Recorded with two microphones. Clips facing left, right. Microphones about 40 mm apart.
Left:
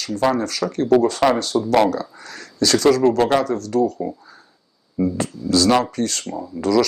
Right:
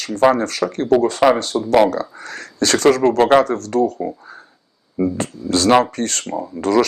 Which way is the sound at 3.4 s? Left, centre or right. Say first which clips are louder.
Right 2 dB; right.